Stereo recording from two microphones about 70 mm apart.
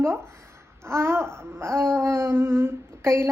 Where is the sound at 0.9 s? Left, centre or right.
Right.